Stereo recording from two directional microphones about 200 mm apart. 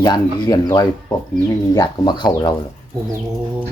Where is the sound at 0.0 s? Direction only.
20° left (ahead or behind).